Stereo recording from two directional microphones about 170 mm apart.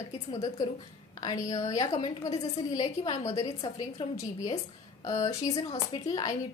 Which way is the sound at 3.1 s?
40° left (ahead or behind).